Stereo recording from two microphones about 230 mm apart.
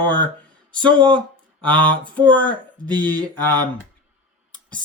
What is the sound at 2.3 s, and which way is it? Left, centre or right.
Speech, centre.